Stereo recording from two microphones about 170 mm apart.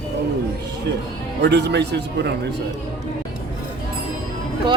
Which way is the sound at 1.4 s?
90° right.